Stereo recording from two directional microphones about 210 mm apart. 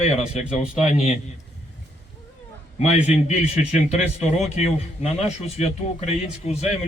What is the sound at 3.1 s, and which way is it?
A man's voice, 35° left (ahead or behind).